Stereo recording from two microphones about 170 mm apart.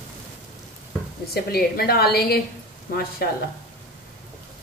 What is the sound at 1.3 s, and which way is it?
Frying, 65° left (ahead or behind).